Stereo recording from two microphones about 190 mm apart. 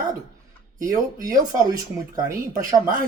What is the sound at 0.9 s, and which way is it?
Speech, 20° right (ahead or behind).